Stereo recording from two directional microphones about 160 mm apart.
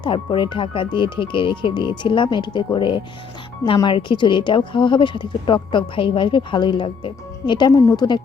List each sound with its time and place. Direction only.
0.0 s speech: 30° left (ahead or behind)